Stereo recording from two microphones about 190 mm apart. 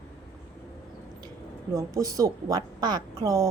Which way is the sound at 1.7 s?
20° right (ahead or behind).